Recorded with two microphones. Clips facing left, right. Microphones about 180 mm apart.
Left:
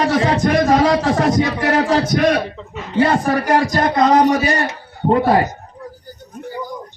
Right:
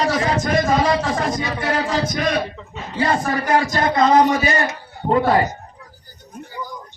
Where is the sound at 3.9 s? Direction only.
35° left (ahead or behind).